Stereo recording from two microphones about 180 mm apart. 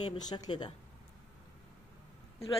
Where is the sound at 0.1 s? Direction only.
20° left (ahead or behind).